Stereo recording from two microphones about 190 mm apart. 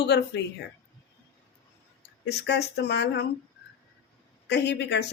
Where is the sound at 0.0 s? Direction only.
65° left (ahead or behind).